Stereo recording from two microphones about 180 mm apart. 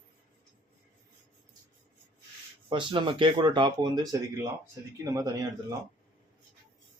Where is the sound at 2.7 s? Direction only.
25° right (ahead or behind).